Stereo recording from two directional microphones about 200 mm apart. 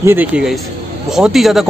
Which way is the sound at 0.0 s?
10° right (ahead or behind).